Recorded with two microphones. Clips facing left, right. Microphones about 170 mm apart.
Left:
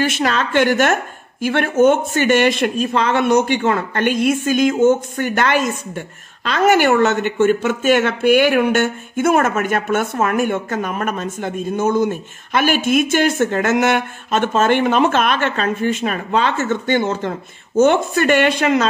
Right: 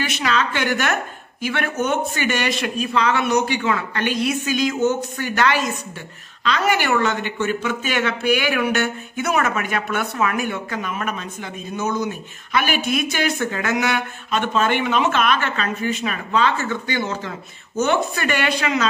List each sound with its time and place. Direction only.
0.0 s speech: 50° left (ahead or behind)